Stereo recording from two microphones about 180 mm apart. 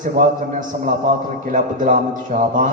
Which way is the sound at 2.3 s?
40° right (ahead or behind).